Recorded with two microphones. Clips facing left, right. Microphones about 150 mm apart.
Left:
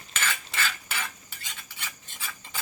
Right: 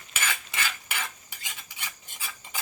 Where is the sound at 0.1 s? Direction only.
10° right (ahead or behind).